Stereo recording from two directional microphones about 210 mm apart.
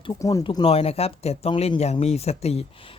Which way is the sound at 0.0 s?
20° left (ahead or behind).